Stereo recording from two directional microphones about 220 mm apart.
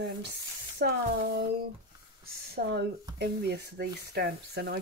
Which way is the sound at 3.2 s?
50° right (ahead or behind).